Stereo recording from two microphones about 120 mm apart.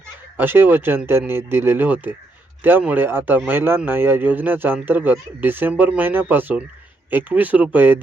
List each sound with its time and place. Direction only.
0.3 s a man's voice: 15° right (ahead or behind)